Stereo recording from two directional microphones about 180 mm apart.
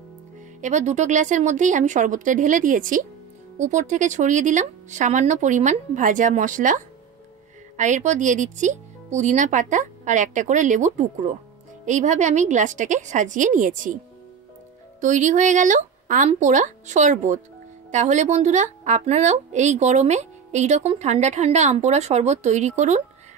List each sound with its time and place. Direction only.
0.6 s speech: 40° right (ahead or behind)
15.0 s a woman's voice: 45° right (ahead or behind)